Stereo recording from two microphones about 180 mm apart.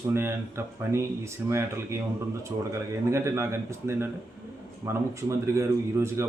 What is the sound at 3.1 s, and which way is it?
Speech, 15° right (ahead or behind).